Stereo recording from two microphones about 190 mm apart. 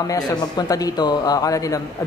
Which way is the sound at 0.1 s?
20° left (ahead or behind).